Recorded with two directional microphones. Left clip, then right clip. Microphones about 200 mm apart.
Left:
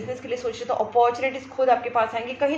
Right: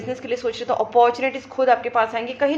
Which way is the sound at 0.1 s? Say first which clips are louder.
Right 4 dB; 50° right (ahead or behind).